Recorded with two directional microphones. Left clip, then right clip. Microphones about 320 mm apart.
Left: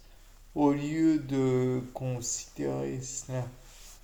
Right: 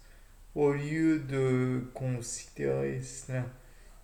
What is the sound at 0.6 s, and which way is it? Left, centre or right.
Speech, left.